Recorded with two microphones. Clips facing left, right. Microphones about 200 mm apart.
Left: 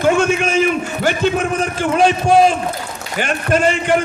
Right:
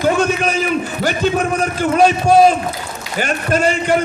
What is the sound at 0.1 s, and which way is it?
A man's voice, 35° right (ahead or behind).